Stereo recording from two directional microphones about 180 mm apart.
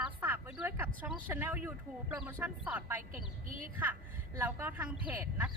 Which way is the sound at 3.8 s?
10° right (ahead or behind).